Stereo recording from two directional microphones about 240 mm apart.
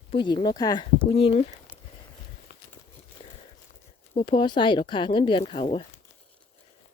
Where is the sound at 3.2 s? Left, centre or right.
Left.